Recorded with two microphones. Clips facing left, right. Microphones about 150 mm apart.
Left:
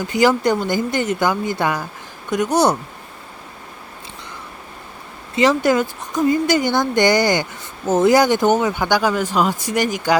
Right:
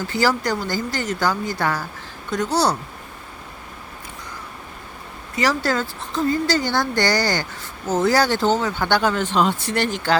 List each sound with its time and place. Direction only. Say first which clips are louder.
0.1 s a woman's voice: left 6 dB; 20° left (ahead or behind)
5.4 s a woman's voice: left 6 dB; 20° left (ahead or behind)